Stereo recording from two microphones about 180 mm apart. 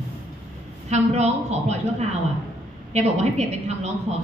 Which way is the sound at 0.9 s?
35° right (ahead or behind).